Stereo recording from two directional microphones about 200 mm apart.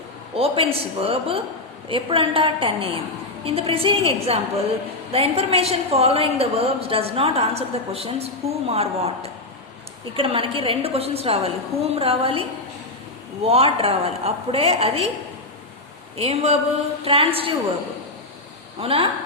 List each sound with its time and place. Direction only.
0.3 s a woman's voice: 30° right (ahead or behind)
16.1 s a woman's voice: 30° right (ahead or behind)
18.8 s a woman's voice: 30° right (ahead or behind)